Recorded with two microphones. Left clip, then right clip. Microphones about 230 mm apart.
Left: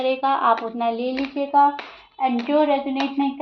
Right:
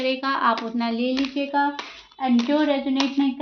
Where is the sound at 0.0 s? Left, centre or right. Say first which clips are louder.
Left 2 dB; right.